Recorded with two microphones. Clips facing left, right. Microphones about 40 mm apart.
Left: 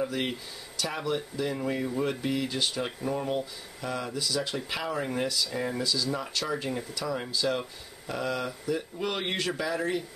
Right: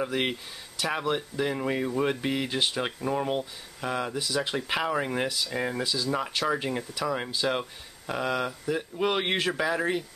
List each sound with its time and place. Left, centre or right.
0.0 s speech: right